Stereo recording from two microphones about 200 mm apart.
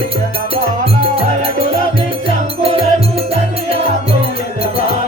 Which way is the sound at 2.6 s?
30° right (ahead or behind).